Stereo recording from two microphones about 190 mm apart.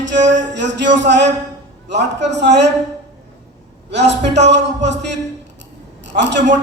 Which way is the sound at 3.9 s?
65° right (ahead or behind).